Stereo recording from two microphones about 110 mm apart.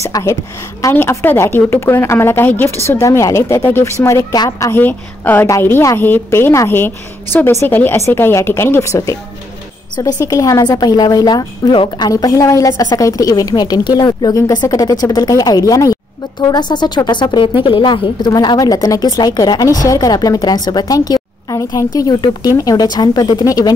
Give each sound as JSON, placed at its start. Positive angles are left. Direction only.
{"t": 0.0, "sound": "a woman's voice", "side_deg": 25}